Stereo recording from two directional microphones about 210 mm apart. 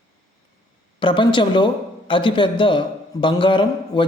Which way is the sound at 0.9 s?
25° left (ahead or behind).